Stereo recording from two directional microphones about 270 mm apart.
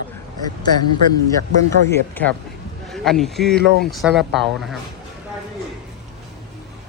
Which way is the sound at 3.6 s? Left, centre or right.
Right.